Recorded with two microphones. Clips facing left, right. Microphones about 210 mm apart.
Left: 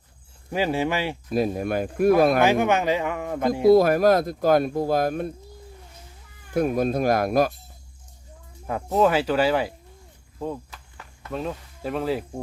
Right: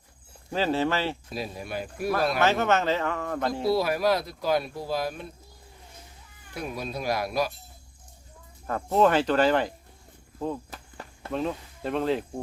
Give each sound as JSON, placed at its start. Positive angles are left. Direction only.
{"t": 0.5, "sound": "speech", "side_deg": 15}
{"t": 1.3, "sound": "speech", "side_deg": 50}
{"t": 2.4, "sound": "speech", "side_deg": 15}
{"t": 3.6, "sound": "speech", "side_deg": 50}
{"t": 6.5, "sound": "speech", "side_deg": 50}
{"t": 8.6, "sound": "speech", "side_deg": 5}
{"t": 11.3, "sound": "speech", "side_deg": 0}